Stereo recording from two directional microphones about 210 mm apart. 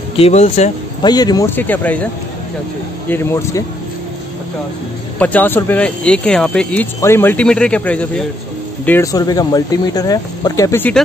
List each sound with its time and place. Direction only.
0.2 s speech: 30° left (ahead or behind)
1.0 s speech: 20° left (ahead or behind)
3.1 s speech: 10° left (ahead or behind)
5.2 s speech: 10° left (ahead or behind)